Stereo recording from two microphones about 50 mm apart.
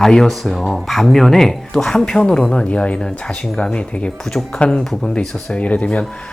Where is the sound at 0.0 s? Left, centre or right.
Centre.